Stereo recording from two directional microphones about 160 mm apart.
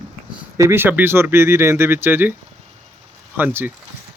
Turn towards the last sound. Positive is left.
turn(degrees=-10)  # may be behind; listen again after turning